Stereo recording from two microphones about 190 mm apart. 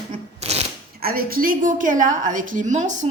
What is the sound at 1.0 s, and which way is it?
Speech, 50° right (ahead or behind).